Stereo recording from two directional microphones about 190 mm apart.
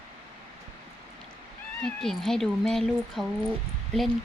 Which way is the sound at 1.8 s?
Centre (ahead or behind).